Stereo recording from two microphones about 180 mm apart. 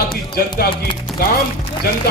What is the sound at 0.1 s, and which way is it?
Music, 60° left (ahead or behind).